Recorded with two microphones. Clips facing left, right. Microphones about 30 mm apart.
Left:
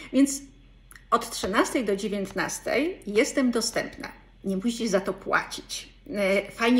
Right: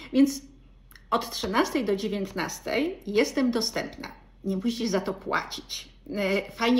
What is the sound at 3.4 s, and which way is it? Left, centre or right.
A woman's voice, right.